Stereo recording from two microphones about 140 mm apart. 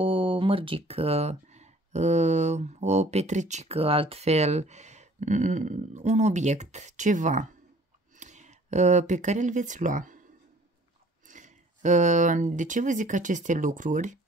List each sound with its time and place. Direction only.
0.0 s speech: 40° right (ahead or behind); by 10.2 s 70° right (ahead or behind)
11.2 s speech: 60° right (ahead or behind)